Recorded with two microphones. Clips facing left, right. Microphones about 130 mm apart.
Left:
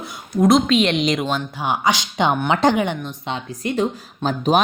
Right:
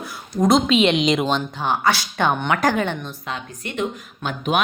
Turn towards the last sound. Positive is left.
turn(degrees=35)  # may be behind; listen again after turning